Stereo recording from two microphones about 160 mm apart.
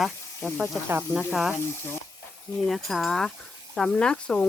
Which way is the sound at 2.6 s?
Centre (ahead or behind).